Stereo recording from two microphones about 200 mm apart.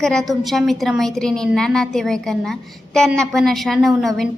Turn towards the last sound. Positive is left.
turn(degrees=0)  # may be behind; listen again after turning